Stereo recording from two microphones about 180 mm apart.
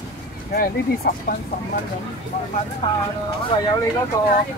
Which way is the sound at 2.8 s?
25° left (ahead or behind).